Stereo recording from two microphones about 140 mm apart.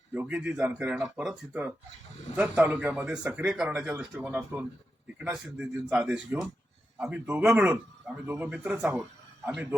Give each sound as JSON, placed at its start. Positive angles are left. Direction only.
{"t": 0.1, "sound": "a man's voice", "side_deg": -10}